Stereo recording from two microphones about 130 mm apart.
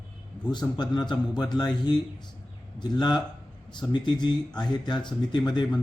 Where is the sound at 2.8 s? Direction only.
35° left (ahead or behind).